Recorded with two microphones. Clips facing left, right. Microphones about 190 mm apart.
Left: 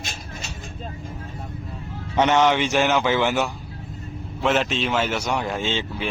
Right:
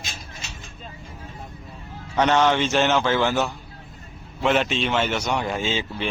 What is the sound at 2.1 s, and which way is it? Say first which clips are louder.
Speech: left 1 dB; 20° left (ahead or behind).